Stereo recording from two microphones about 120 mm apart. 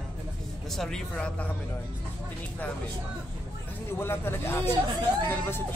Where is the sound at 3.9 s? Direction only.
20° left (ahead or behind).